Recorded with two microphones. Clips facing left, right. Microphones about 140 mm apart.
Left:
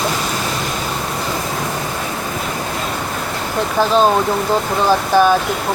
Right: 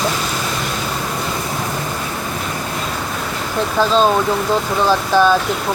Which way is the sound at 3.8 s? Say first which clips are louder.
Left 1 dB; 15° left (ahead or behind).